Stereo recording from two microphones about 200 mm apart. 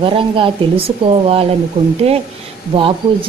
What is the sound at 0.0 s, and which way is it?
Speech, 25° right (ahead or behind).